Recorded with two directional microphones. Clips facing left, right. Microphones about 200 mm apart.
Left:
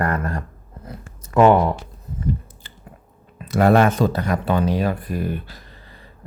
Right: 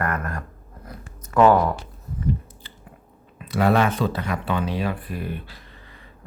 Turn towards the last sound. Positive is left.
turn(degrees=40)  # may be behind; listen again after turning